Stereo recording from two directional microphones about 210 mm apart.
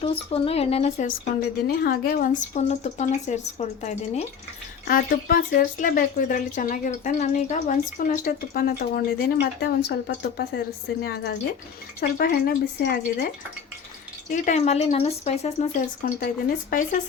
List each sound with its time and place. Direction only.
0.0 s speech: 25° left (ahead or behind)
1.6 s speech: 45° left (ahead or behind)
4.9 s speech: 45° left (ahead or behind)
14.3 s speech: 35° left (ahead or behind)
16.0 s speech: 40° left (ahead or behind)